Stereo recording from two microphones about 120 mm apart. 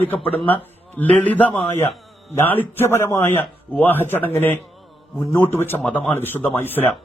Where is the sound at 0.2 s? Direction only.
50° left (ahead or behind).